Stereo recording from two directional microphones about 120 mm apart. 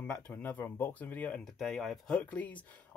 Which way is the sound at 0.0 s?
10° left (ahead or behind).